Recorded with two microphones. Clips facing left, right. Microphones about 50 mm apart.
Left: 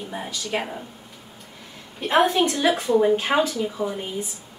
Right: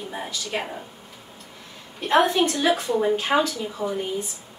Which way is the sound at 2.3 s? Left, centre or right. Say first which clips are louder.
Left 1 dB; centre.